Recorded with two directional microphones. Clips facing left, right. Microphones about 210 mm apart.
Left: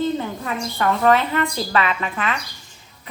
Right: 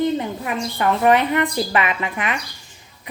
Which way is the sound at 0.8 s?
15° right (ahead or behind).